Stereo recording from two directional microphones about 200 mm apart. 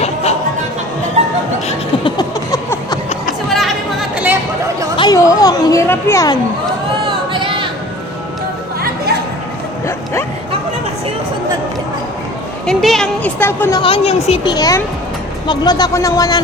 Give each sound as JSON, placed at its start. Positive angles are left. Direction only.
{"t": 0.0, "sound": "music", "side_deg": 30}
{"t": 1.2, "sound": "music", "side_deg": -30}
{"t": 1.6, "sound": "music", "side_deg": 20}
{"t": 4.9, "sound": "a sound", "side_deg": 20}
{"t": 12.6, "sound": "a woman's voice", "side_deg": 0}